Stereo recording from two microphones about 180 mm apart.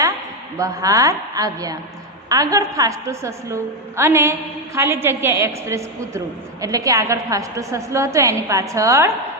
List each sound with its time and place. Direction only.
0.5 s a woman's voice: 20° right (ahead or behind)